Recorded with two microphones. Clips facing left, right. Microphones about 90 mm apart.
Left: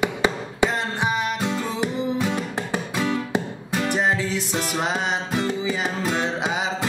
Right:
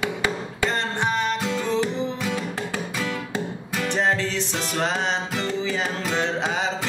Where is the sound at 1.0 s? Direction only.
5° left (ahead or behind).